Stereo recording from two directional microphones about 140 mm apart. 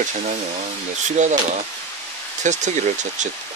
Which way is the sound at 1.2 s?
60° right (ahead or behind).